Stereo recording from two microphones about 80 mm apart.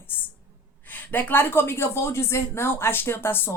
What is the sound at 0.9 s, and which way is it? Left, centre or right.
A woman's voice, left.